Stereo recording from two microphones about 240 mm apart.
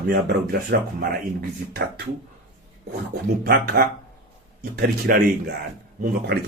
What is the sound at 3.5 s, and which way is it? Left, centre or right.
Speech, right.